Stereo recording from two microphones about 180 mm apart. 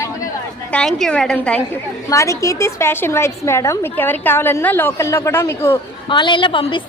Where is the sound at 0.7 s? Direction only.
5° left (ahead or behind).